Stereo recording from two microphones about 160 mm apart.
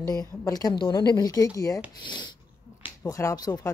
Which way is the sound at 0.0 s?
25° left (ahead or behind).